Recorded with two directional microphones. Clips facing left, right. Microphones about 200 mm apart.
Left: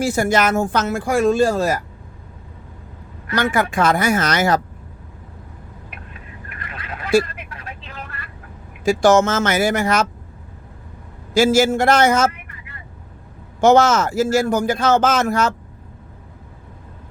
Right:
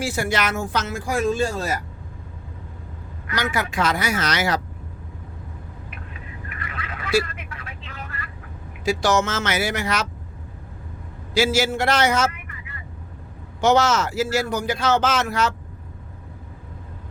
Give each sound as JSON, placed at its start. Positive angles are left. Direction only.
{"t": 0.0, "sound": "speech", "side_deg": 45}
{"t": 3.3, "sound": "speech", "side_deg": 50}
{"t": 6.9, "sound": "vehicle", "side_deg": 45}
{"t": 8.8, "sound": "speech", "side_deg": 50}
{"t": 11.3, "sound": "speech", "side_deg": 45}
{"t": 13.6, "sound": "speech", "side_deg": 50}